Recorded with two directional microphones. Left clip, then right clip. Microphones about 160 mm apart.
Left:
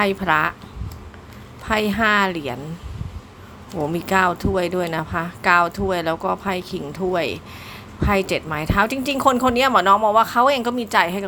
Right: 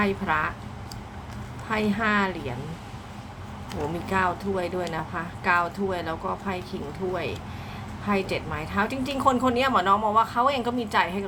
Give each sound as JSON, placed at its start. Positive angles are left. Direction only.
{"t": 0.0, "sound": "speech", "side_deg": 50}
{"t": 1.6, "sound": "speech", "side_deg": 50}
{"t": 4.0, "sound": "speech", "side_deg": 50}